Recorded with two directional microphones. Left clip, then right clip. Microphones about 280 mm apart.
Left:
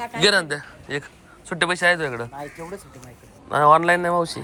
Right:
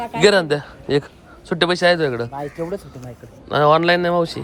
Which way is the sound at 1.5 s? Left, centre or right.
Centre.